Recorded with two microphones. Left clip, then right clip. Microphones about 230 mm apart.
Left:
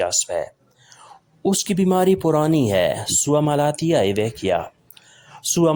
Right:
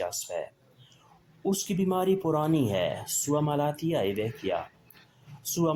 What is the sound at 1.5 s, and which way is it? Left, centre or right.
Speech, left.